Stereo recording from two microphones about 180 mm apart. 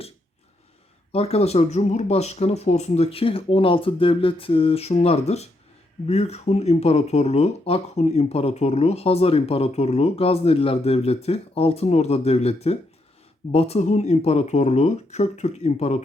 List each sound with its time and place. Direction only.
1.1 s speech: 35° left (ahead or behind)